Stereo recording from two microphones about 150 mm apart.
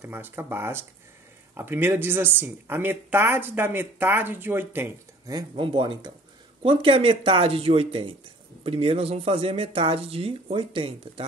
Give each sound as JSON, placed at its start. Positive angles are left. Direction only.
{"t": 0.0, "sound": "speech", "side_deg": -15}
{"t": 5.6, "sound": "speech", "side_deg": -30}